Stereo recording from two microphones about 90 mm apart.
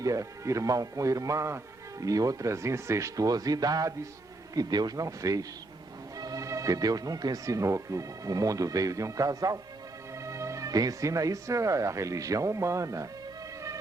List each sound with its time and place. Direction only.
0.0 s a man's voice: 40° right (ahead or behind)